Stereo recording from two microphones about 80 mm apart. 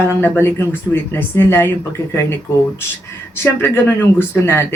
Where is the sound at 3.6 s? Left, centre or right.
Left.